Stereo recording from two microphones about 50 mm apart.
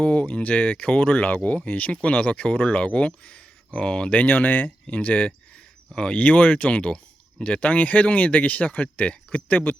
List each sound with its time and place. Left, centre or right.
0.0 s speech: left
4.1 s speech: left
5.9 s speech: centre
6.1 s speech: left